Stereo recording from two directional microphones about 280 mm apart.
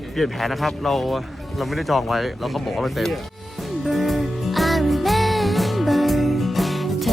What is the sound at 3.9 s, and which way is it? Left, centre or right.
Music, centre.